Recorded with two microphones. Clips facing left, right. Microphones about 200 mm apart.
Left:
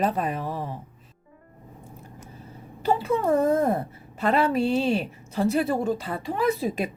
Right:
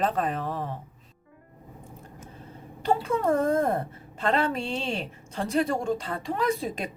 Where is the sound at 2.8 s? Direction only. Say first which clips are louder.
Left 1 dB; 5° left (ahead or behind).